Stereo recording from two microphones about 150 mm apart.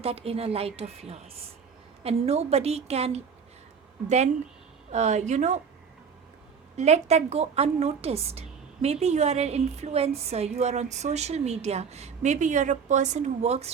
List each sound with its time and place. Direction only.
0.0 s a woman's voice: 40° right (ahead or behind)
4.9 s a woman's voice: 50° right (ahead or behind)
6.7 s a woman's voice: 50° right (ahead or behind)